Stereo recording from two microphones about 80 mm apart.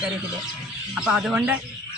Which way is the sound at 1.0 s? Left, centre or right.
Centre.